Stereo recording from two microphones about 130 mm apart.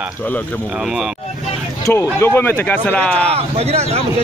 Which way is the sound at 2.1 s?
15° left (ahead or behind).